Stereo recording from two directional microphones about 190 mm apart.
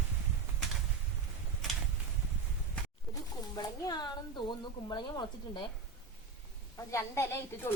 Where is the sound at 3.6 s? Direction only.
20° left (ahead or behind).